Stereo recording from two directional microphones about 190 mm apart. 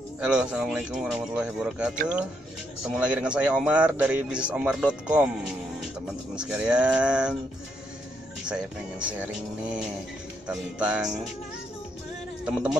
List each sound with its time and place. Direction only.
0.2 s speech: 5° right (ahead or behind)
6.3 s speech: 5° right (ahead or behind)
8.5 s speech: 5° right (ahead or behind)
12.4 s speech: 5° right (ahead or behind)